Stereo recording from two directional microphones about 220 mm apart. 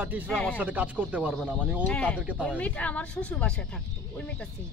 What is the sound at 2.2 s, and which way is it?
Speech, 5° right (ahead or behind).